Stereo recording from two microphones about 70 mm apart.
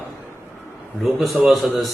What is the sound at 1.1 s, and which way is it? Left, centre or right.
Speech, centre.